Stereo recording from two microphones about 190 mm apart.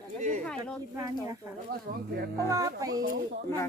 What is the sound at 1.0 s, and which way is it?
Speech, 20° right (ahead or behind).